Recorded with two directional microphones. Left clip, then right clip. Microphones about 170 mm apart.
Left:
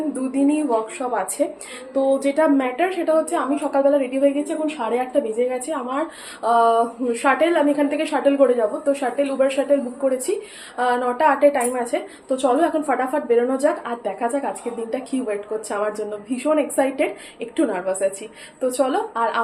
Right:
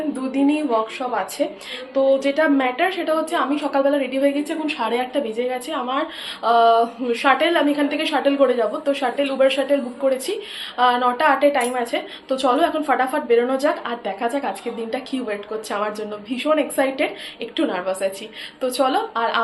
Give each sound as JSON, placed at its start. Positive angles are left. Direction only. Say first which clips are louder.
{"t": 0.3, "sound": "a woman's voice", "louder": "even", "side_deg": 10}